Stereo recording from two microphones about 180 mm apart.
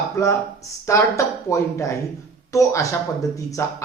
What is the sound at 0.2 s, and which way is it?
Speech, 15° left (ahead or behind).